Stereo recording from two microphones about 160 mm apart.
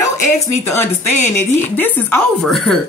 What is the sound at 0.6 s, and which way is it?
A woman's voice, 15° left (ahead or behind).